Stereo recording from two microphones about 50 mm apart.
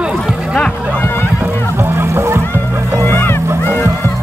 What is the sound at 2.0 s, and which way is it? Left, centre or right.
Music, right.